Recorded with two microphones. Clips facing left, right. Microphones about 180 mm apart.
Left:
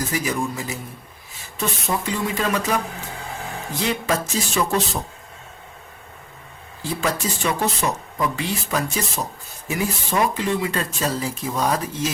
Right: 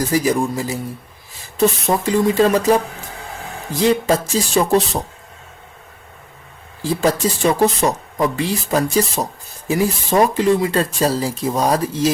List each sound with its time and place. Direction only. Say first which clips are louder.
0.1 s speech: right 7 dB; 35° right (ahead or behind)
7.0 s speech: right 7 dB; 35° right (ahead or behind)